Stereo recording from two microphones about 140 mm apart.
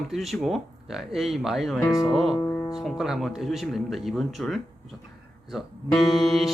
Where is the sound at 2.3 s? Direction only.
20° left (ahead or behind).